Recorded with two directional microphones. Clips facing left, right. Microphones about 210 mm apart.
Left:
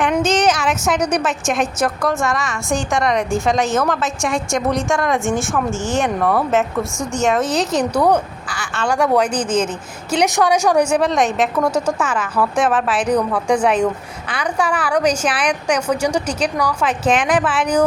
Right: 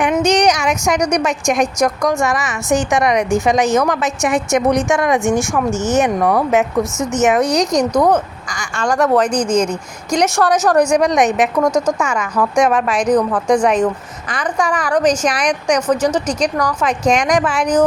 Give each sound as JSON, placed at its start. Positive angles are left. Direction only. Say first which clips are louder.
{"t": 0.0, "sound": "a sound", "louder": "right 2 dB", "side_deg": 0}
{"t": 1.0, "sound": "speech", "louder": "right 3 dB", "side_deg": 5}
{"t": 3.6, "sound": "speech", "louder": "right 3 dB", "side_deg": 0}
{"t": 5.1, "sound": "a woman's voice", "louder": "right 3 dB", "side_deg": -15}
{"t": 7.4, "sound": "a woman's voice", "louder": "right 3 dB", "side_deg": 0}